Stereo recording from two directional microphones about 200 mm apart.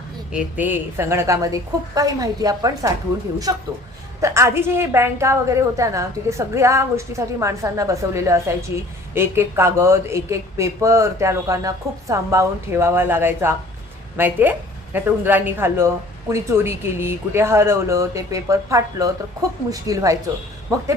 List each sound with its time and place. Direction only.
0.3 s a woman's voice: 5° right (ahead or behind)